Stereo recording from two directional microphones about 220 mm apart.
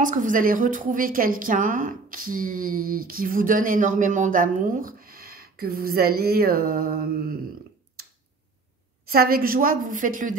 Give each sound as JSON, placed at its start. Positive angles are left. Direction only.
{"t": 0.0, "sound": "a woman's voice", "side_deg": -35}
{"t": 9.1, "sound": "a woman's voice", "side_deg": -40}